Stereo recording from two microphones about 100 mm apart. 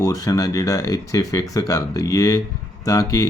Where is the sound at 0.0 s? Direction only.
35° left (ahead or behind).